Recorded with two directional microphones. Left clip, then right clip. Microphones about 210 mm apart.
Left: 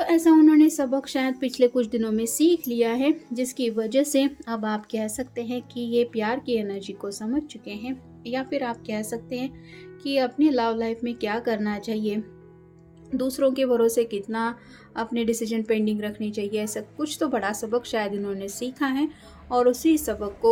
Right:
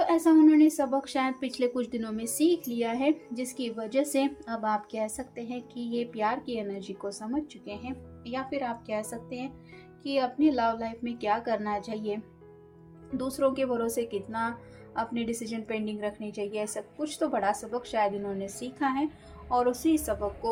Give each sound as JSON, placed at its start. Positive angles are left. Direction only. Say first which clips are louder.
{"t": 0.0, "sound": "a woman's voice", "louder": "left 4 dB", "side_deg": 40}